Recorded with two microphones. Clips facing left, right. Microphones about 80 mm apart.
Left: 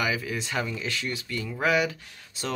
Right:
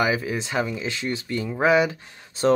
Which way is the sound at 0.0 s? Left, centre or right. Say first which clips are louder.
Right 5 dB; right.